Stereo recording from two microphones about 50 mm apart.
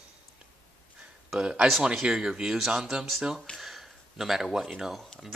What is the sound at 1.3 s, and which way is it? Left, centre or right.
Speech, centre.